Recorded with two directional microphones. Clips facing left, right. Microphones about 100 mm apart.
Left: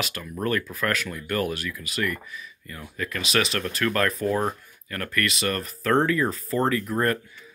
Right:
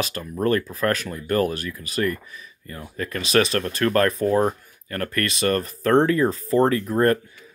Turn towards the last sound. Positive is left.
turn(degrees=-35)  # may be behind; listen again after turning